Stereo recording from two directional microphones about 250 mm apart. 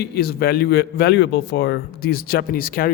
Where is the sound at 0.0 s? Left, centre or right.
Left.